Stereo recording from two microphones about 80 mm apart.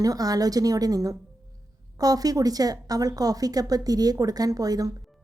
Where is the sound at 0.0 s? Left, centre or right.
Right.